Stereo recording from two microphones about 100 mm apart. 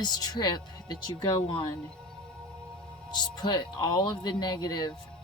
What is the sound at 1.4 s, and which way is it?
Speech, 55° left (ahead or behind).